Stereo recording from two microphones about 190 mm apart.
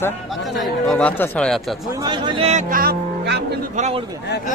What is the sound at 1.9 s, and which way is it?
Speech, 20° right (ahead or behind).